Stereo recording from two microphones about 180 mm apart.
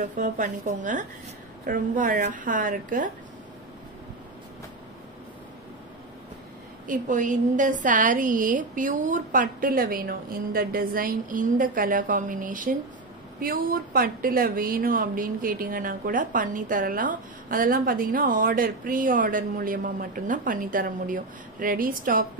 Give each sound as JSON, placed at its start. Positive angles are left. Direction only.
{"t": 0.0, "sound": "a woman's voice", "side_deg": -45}
{"t": 6.9, "sound": "a woman's voice", "side_deg": -45}